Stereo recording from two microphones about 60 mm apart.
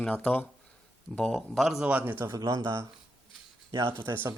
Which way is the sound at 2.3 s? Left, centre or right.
Right.